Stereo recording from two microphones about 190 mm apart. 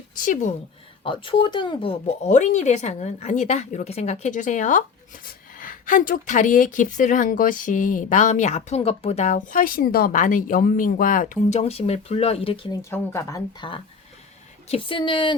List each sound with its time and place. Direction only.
0.2 s a woman's voice: 40° left (ahead or behind)
1.0 s a woman's voice: 25° left (ahead or behind)
12.9 s a woman's voice: 15° left (ahead or behind)